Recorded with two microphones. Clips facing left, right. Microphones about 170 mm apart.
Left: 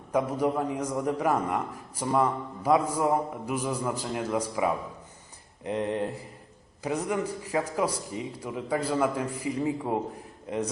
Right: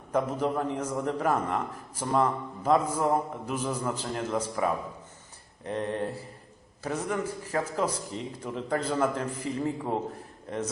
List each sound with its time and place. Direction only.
0.1 s a man's voice: 10° left (ahead or behind)